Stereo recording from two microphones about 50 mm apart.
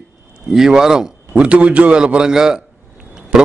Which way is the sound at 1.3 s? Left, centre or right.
Right.